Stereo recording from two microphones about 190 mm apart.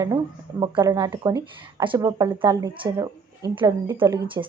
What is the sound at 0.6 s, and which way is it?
Speech, 25° right (ahead or behind).